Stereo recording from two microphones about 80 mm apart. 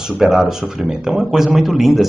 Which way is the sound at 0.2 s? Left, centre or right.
Centre.